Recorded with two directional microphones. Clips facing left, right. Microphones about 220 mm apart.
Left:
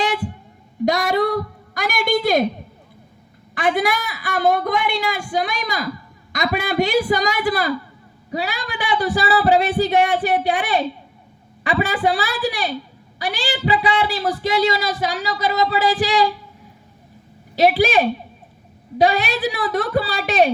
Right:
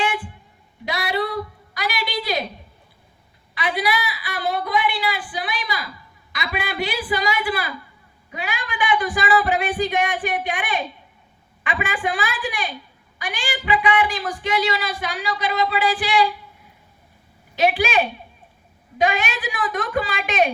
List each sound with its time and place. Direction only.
0.0 s a sound: 40° left (ahead or behind)
3.5 s a woman's voice: 50° left (ahead or behind)
17.5 s speech: 35° left (ahead or behind)